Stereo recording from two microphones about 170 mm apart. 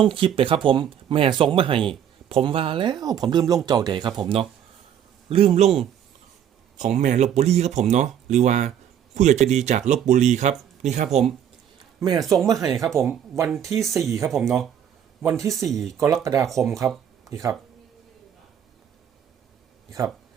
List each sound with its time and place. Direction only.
0.0 s speech: 30° right (ahead or behind)
11.9 s speech: 25° right (ahead or behind)
12.2 s speech: centre (ahead or behind)
12.5 s speech: 20° right (ahead or behind)
14.3 s speech: centre (ahead or behind)
15.2 s speech: 20° right (ahead or behind)
16.5 s speech: centre (ahead or behind)
17.2 s speech: 20° right (ahead or behind)